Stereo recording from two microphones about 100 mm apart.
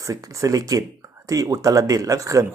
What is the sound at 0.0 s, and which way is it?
Speech, 35° right (ahead or behind).